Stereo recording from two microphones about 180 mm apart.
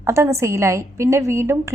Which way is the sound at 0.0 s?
15° right (ahead or behind).